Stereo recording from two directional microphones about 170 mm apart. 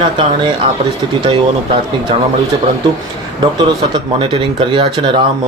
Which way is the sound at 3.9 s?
30° right (ahead or behind).